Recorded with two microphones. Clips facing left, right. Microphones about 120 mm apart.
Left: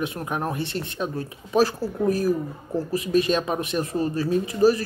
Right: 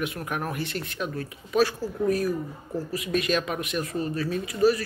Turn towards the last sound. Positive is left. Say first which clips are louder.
# left 3 dB
turn(degrees=30)  # may be behind; listen again after turning